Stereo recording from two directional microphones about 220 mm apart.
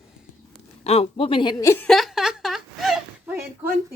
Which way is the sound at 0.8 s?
30° left (ahead or behind).